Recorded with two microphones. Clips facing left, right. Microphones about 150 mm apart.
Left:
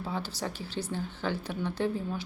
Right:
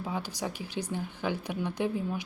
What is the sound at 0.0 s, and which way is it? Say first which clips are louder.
A woman's voice: even; 15° right (ahead or behind).